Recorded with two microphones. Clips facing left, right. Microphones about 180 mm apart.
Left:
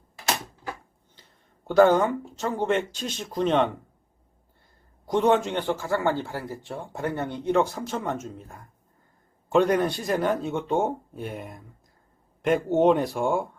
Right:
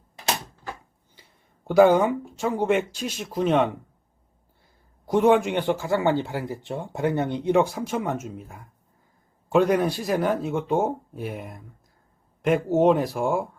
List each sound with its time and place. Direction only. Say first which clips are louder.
1.6 s speech: right 2 dB; 10° right (ahead or behind)
5.0 s speech: right 3 dB; 5° right (ahead or behind)